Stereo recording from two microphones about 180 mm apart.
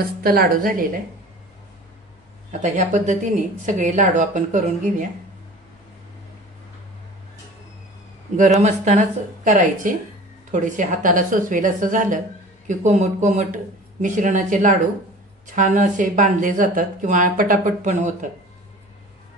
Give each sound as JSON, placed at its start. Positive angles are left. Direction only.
{"t": 0.2, "sound": "speech", "side_deg": -55}
{"t": 2.6, "sound": "speech", "side_deg": -45}
{"t": 8.4, "sound": "speech", "side_deg": -40}